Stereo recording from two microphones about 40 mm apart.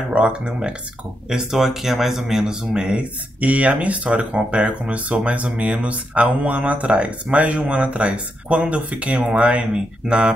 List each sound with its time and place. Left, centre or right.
0.1 s speech: right
1.3 s speech: centre
3.0 s speech: right